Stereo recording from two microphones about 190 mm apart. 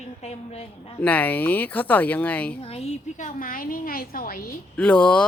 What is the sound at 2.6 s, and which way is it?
A woman's voice, 30° left (ahead or behind).